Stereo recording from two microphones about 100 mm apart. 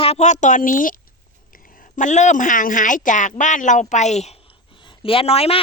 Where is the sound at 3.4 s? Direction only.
90° left.